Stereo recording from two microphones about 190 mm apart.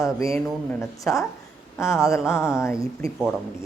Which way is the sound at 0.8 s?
15° left (ahead or behind).